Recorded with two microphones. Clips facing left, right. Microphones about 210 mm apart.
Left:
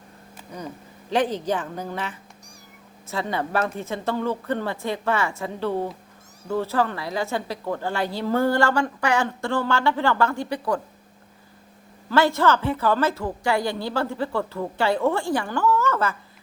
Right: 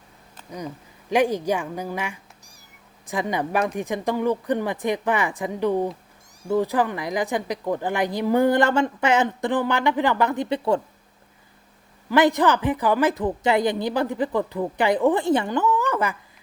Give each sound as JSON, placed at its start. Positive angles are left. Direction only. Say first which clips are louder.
{"t": 0.5, "sound": "a woman's voice", "louder": "right 2 dB", "side_deg": -10}
{"t": 12.0, "sound": "a woman's voice", "louder": "right 2 dB", "side_deg": -15}